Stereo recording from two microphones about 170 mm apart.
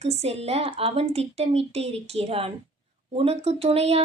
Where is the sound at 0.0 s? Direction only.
35° right (ahead or behind).